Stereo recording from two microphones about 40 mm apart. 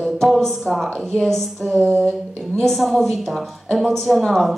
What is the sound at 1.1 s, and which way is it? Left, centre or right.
Speech, centre.